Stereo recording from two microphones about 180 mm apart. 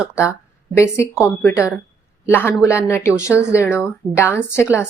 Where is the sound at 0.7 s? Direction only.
15° left (ahead or behind).